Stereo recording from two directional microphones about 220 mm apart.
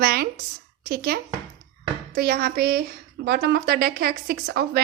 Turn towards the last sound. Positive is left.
turn(degrees=-45)  # may be behind; listen again after turning